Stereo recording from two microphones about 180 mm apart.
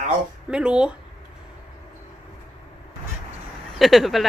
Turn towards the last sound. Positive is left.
turn(degrees=0)  # may be behind; listen again after turning